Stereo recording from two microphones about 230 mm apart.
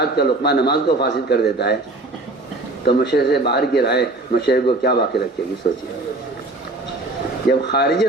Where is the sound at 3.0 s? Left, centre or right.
Left.